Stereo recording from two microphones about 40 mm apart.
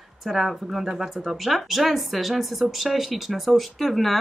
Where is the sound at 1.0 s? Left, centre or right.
Centre.